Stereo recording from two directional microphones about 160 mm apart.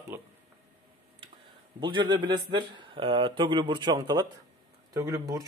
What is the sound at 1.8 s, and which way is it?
Speech, 30° right (ahead or behind).